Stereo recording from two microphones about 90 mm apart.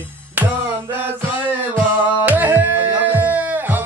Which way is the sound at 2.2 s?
20° right (ahead or behind).